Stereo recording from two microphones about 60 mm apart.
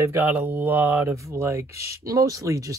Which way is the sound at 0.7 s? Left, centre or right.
Right.